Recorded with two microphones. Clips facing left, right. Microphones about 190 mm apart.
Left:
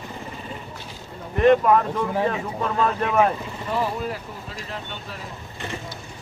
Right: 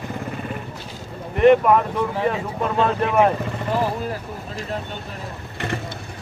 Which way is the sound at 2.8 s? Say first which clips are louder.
Right 2 dB; 25° right (ahead or behind).